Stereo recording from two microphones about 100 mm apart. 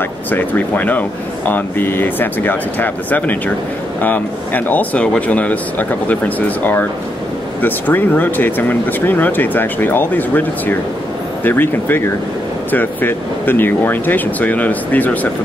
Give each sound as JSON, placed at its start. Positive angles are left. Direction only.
{"t": 0.3, "sound": "speech", "side_deg": 15}